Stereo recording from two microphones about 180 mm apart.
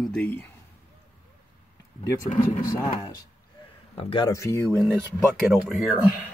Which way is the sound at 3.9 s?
30° left (ahead or behind).